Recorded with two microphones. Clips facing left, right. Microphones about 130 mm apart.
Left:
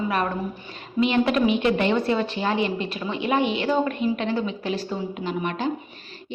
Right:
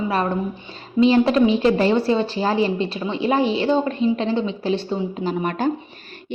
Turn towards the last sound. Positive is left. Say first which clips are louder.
# right 4 dB
turn(degrees=-40)  # may be behind; listen again after turning